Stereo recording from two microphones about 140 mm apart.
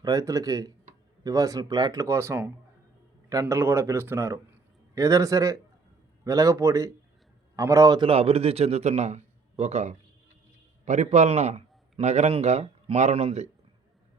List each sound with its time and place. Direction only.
0.0 s speech: 25° right (ahead or behind)
8.1 s a man's voice: 45° right (ahead or behind)